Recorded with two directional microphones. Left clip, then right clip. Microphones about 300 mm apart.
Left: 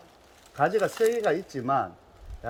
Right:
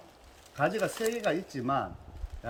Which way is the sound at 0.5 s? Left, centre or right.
Centre.